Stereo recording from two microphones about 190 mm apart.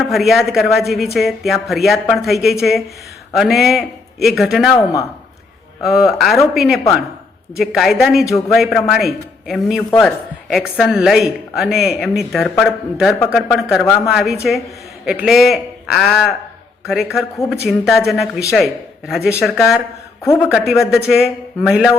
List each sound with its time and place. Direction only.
0.1 s speech: centre (ahead or behind)
4.8 s speech: 15° left (ahead or behind)
5.8 s speech: centre (ahead or behind)
20.2 s speech: 10° left (ahead or behind)
20.5 s speech: centre (ahead or behind)